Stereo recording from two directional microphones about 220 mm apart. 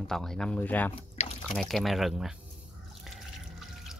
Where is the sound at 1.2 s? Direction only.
30° left (ahead or behind).